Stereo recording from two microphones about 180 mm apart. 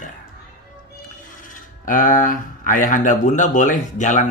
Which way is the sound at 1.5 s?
45° left (ahead or behind).